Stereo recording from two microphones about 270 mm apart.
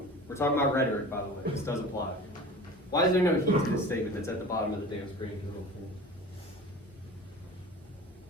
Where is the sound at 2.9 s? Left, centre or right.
Centre.